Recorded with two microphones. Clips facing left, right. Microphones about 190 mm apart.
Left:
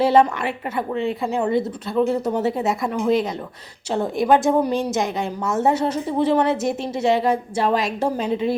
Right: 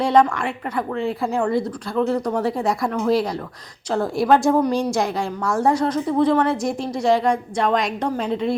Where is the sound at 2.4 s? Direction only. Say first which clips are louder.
Even; 5° left (ahead or behind).